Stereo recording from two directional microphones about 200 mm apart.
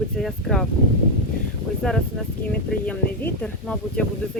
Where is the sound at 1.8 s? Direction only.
Centre (ahead or behind).